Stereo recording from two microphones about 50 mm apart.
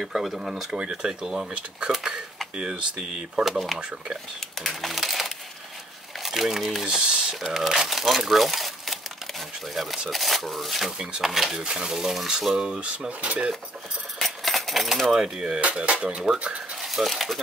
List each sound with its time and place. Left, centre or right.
0.0 s speech: centre
3.4 s speech: centre
11.5 s speech: centre
14.1 s coin: centre
15.6 s speech: right
16.8 s speech: centre